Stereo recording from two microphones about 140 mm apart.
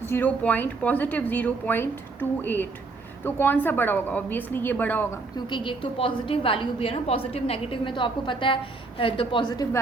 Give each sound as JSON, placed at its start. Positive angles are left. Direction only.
{"t": 0.0, "sound": "a woman's voice", "side_deg": 15}
{"t": 5.5, "sound": "a woman's voice", "side_deg": 35}